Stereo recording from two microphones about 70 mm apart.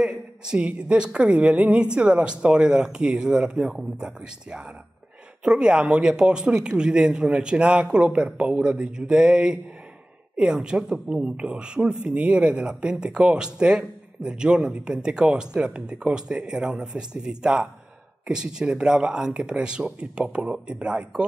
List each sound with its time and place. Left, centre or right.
0.0 s speech: centre